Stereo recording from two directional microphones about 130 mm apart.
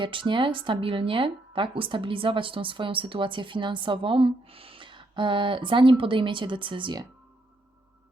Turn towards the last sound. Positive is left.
turn(degrees=-35)  # may be behind; listen again after turning